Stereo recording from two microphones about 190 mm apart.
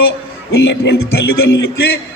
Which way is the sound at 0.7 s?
60° left (ahead or behind).